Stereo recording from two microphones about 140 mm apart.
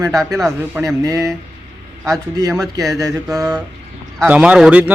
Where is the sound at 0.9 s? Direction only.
20° right (ahead or behind).